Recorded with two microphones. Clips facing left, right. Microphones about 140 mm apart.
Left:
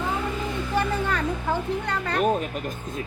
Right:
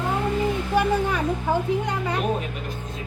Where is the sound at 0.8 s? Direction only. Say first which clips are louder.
Right 3 dB; 15° right (ahead or behind).